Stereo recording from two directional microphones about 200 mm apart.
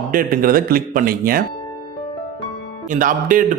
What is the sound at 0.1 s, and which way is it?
Speech, 45° right (ahead or behind).